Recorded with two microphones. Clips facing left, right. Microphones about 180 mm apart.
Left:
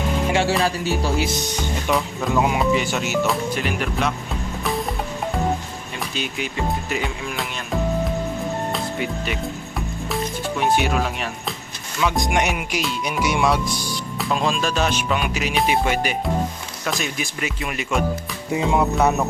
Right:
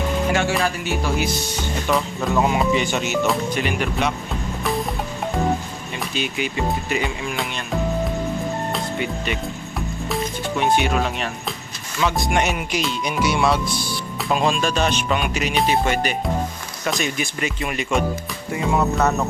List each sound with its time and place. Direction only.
0.3 s speech: 30° left (ahead or behind)
1.9 s speech: centre (ahead or behind)
6.1 s speech: centre (ahead or behind)
8.7 s music: centre (ahead or behind)
10.6 s speech: 5° left (ahead or behind)
12.1 s music: 15° left (ahead or behind)
14.3 s speech: centre (ahead or behind)
15.8 s music: 5° left (ahead or behind)
16.8 s speech: centre (ahead or behind)
18.5 s music: 15° left (ahead or behind)